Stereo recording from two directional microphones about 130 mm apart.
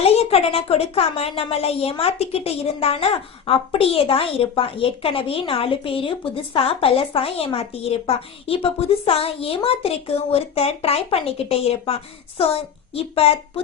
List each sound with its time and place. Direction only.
0.0 s a woman's voice: 50° left (ahead or behind)